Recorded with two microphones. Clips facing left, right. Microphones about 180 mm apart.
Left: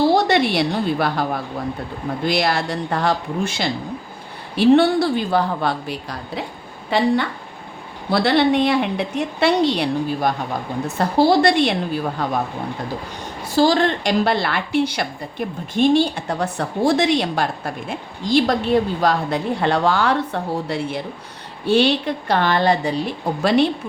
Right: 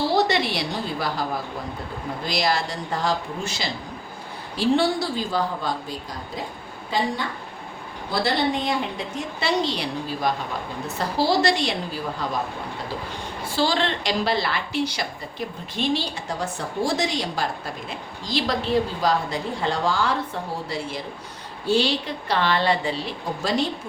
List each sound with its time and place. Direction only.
0.3 s a woman's voice: 55° left (ahead or behind)
8.1 s a woman's voice: 65° left (ahead or behind)
13.6 s a woman's voice: 45° left (ahead or behind)
23.4 s a woman's voice: 65° left (ahead or behind)